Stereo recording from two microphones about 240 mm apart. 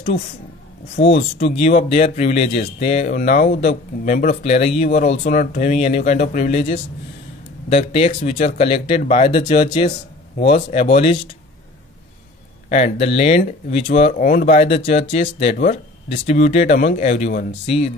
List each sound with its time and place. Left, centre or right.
0.9 s speech: left
12.6 s speech: left